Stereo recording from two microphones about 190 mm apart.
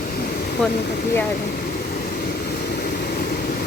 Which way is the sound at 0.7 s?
55° left (ahead or behind).